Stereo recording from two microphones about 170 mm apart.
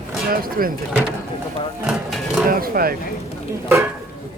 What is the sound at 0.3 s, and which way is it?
Speech, 60° right (ahead or behind).